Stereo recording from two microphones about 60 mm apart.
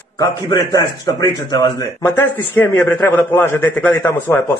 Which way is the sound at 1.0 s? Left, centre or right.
Left.